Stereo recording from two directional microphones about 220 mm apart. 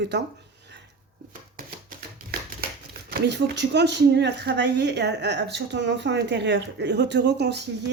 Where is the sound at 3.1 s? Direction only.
45° right (ahead or behind).